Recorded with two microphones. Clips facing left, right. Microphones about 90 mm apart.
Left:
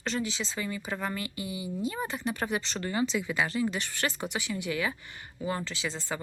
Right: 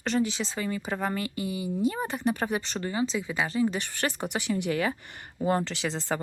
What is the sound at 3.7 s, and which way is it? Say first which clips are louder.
Speech: right 2 dB; 45° right (ahead or behind).